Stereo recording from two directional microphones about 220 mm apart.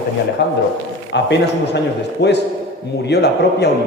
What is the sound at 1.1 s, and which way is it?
A man's voice, 50° left (ahead or behind).